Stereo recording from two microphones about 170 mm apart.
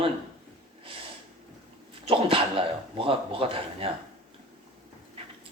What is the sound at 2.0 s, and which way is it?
Speech, 30° right (ahead or behind).